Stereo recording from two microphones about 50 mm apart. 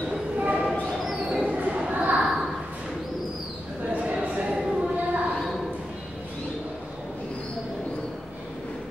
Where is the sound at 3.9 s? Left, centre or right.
Right.